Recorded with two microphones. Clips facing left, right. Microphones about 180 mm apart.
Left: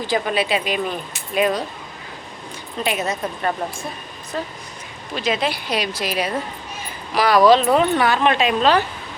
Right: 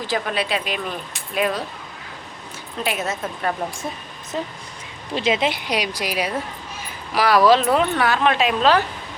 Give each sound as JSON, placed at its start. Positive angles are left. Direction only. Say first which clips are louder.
{"t": 0.1, "sound": "speech", "louder": "left 3 dB", "side_deg": 0}
{"t": 2.7, "sound": "speech", "louder": "left 2 dB", "side_deg": 0}
{"t": 4.3, "sound": "speech", "louder": "even", "side_deg": -20}